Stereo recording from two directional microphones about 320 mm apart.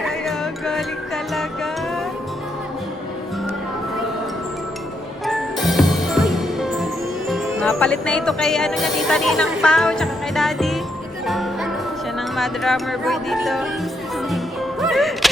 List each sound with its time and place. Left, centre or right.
0.0 s music: centre
5.2 s music: centre
7.3 s speech: centre
11.3 s music: centre
12.4 s speech: centre
14.3 s music: centre